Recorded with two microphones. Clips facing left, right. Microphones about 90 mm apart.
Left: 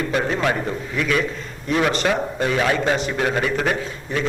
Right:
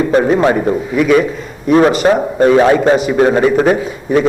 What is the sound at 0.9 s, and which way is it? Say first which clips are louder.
Speech: right 11 dB; 15° right (ahead or behind).